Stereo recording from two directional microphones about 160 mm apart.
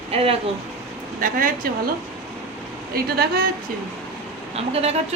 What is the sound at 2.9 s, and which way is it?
Speech, 70° right (ahead or behind).